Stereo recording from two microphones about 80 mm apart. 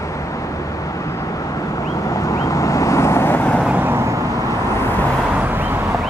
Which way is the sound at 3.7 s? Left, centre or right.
Right.